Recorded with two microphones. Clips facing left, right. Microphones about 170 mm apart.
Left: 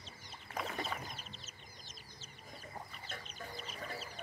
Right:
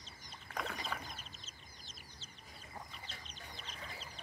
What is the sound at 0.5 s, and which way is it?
Chicken, 5° left (ahead or behind).